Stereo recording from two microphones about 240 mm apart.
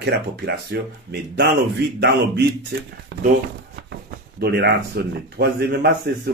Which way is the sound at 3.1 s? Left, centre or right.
Right.